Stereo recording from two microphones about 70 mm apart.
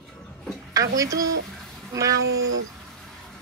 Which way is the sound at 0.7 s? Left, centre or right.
Right.